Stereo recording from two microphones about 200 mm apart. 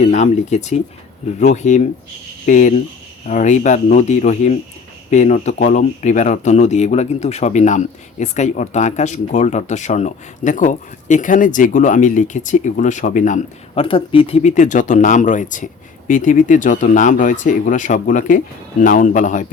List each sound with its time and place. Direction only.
0.0 s a man's voice: 35° left (ahead or behind)
13.8 s a man's voice: 25° left (ahead or behind)